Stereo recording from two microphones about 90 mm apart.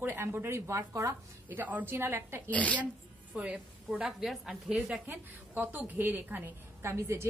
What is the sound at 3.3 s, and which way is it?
A woman's voice, 10° right (ahead or behind).